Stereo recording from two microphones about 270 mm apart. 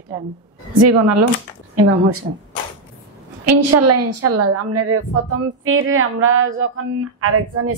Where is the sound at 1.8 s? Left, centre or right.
Right.